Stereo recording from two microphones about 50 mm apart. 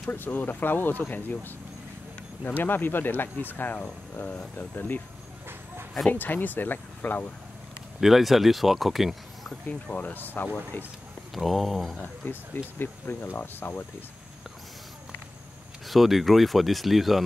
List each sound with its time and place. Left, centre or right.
0.1 s speech: left
6.1 s speech: left
8.0 s speech: centre
9.9 s speech: left
11.3 s speech: centre
12.2 s speech: left
15.9 s speech: centre